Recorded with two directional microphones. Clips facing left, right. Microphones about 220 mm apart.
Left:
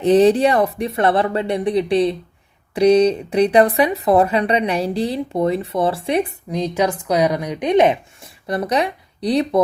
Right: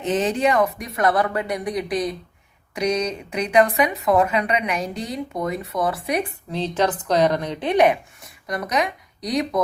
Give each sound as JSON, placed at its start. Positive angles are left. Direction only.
{"t": 0.0, "sound": "speech", "side_deg": 35}
{"t": 6.5, "sound": "speech", "side_deg": 10}